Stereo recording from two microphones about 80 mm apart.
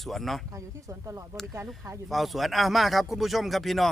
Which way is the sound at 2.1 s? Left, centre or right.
Centre.